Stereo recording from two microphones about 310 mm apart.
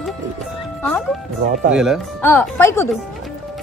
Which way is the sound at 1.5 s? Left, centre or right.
Right.